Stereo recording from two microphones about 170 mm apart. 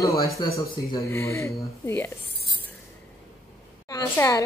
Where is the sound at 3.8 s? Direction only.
20° left (ahead or behind).